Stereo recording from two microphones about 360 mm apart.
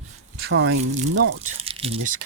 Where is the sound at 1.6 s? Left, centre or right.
Centre.